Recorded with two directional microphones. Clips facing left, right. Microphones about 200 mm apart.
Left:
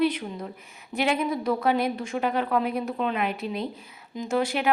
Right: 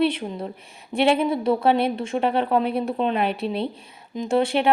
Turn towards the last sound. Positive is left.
turn(degrees=-30)  # may be behind; listen again after turning